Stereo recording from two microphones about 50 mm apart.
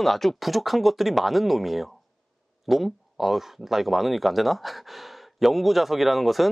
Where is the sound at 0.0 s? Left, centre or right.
Centre.